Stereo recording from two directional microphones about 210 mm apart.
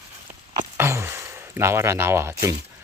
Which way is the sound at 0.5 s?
15° right (ahead or behind).